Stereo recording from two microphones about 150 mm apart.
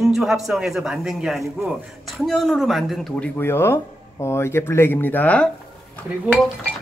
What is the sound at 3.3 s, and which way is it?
Speech, 15° left (ahead or behind).